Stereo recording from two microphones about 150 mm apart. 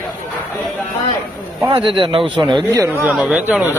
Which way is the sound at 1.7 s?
35° right (ahead or behind).